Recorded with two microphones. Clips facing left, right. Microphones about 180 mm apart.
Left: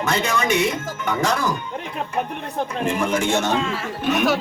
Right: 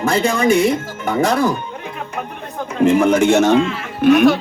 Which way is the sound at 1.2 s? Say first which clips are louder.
Right 7 dB; 55° right (ahead or behind).